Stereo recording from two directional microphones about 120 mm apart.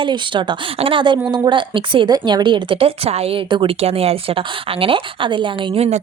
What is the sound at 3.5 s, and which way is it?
Speech, 40° right (ahead or behind).